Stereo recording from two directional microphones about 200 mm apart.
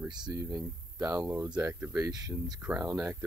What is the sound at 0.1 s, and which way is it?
Speech, 20° right (ahead or behind).